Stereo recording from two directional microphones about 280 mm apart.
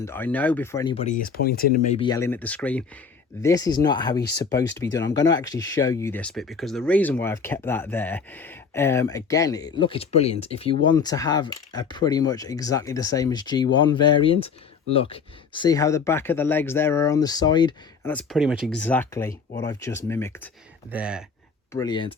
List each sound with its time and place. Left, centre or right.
0.0 s speech: centre
19.3 s speech: left
20.1 s speech: centre
20.9 s speech: centre
21.7 s speech: centre